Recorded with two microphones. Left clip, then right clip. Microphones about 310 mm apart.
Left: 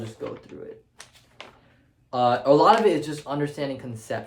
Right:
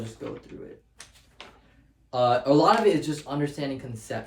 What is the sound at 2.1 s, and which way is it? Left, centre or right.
Speech, left.